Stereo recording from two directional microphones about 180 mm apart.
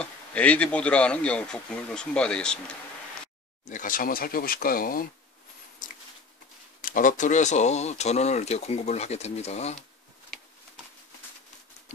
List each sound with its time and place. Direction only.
0.0 s speech: 5° left (ahead or behind)
3.6 s speech: 45° left (ahead or behind)
6.8 s speech: 50° left (ahead or behind)